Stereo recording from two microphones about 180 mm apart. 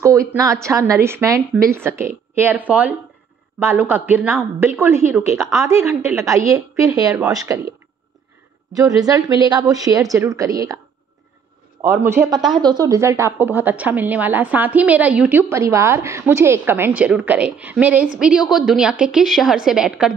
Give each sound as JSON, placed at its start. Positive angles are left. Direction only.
{"t": 0.0, "sound": "a woman's voice", "side_deg": -15}
{"t": 8.7, "sound": "a woman's voice", "side_deg": -20}
{"t": 11.8, "sound": "a woman's voice", "side_deg": -15}